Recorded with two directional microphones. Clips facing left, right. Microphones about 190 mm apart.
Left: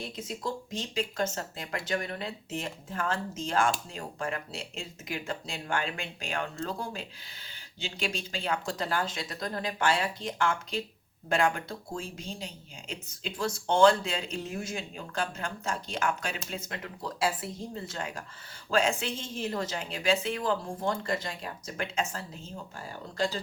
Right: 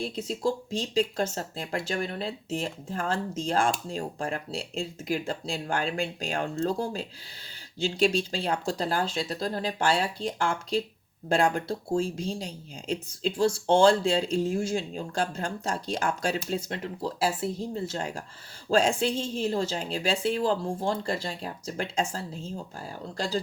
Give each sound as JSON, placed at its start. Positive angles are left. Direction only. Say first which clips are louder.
{"t": 0.0, "sound": "speech", "louder": "right 7 dB", "side_deg": -30}